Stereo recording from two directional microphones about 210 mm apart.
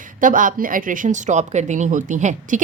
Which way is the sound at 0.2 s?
40° right (ahead or behind).